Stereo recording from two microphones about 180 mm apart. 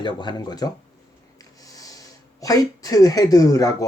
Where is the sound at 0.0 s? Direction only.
25° left (ahead or behind).